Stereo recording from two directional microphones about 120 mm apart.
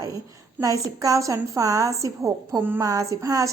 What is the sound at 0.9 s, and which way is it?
A woman's voice, 30° right (ahead or behind).